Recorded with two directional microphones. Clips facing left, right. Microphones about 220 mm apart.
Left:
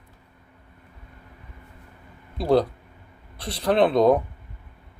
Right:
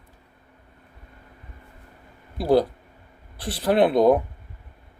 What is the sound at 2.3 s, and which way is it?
Speech, 5° right (ahead or behind).